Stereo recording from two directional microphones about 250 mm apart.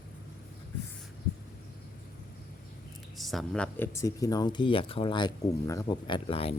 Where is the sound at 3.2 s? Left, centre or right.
Centre.